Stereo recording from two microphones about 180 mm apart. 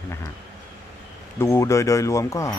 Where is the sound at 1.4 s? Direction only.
15° left (ahead or behind).